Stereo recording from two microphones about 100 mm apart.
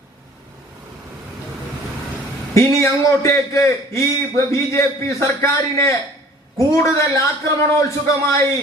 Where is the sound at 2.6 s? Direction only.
30° left (ahead or behind).